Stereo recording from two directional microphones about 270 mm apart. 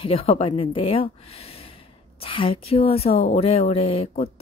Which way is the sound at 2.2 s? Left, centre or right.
Left.